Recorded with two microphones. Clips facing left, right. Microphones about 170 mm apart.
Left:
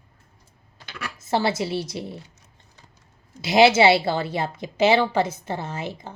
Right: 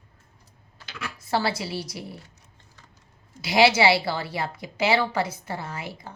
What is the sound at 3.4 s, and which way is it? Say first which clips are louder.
A woman's voice: left 4 dB; 20° left (ahead or behind).